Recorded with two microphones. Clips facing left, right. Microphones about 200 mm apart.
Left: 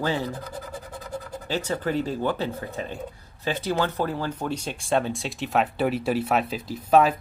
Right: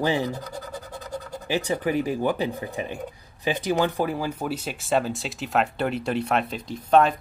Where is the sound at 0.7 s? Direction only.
5° left (ahead or behind).